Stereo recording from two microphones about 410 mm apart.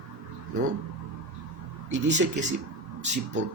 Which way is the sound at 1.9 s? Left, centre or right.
Centre.